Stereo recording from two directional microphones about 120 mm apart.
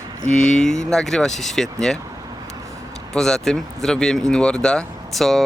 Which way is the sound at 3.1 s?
5° left (ahead or behind).